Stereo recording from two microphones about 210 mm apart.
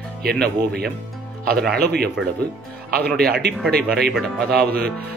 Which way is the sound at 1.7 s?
50° right (ahead or behind).